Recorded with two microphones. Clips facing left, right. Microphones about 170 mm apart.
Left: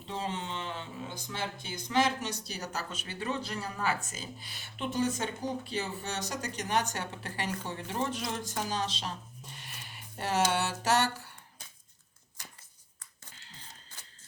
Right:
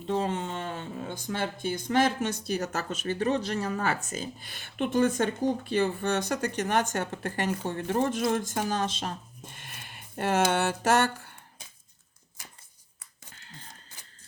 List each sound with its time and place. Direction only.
0.1 s speech: 50° right (ahead or behind)